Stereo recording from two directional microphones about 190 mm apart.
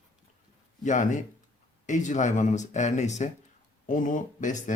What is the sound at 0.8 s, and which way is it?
Speech, 40° left (ahead or behind).